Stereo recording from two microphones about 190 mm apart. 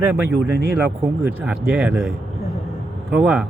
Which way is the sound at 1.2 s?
5° right (ahead or behind).